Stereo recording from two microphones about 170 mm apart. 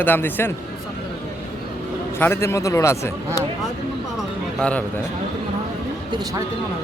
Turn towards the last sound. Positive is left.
turn(degrees=-25)  # may be behind; listen again after turning